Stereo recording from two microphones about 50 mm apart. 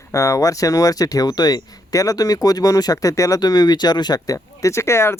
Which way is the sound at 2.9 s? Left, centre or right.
Left.